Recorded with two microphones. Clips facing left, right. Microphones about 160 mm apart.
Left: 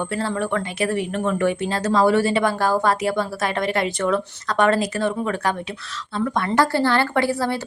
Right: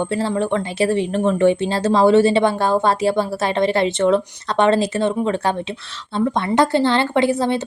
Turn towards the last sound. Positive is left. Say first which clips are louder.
# right 4 dB
turn(degrees=-20)  # may be behind; listen again after turning